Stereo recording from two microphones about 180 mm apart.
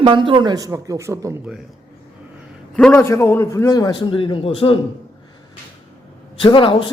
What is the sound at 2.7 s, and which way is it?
A man's voice, 10° left (ahead or behind).